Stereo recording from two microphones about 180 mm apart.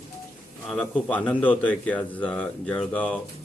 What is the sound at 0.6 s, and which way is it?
A man's voice, 5° left (ahead or behind).